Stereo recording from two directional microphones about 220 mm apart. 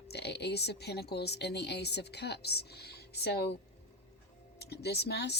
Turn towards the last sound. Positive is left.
turn(degrees=50)  # may be behind; listen again after turning